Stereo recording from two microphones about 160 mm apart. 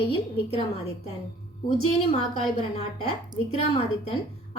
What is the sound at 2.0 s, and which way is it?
Speech, 40° left (ahead or behind).